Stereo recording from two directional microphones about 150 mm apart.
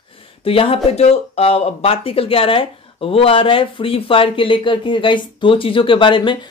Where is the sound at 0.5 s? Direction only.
40° left (ahead or behind).